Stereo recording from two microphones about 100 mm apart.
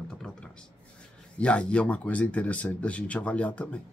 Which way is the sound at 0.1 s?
10° left (ahead or behind).